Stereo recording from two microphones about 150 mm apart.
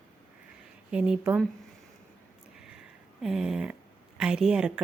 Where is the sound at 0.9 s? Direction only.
5° right (ahead or behind).